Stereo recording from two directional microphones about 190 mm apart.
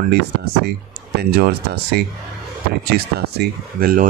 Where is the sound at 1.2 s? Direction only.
55° right (ahead or behind).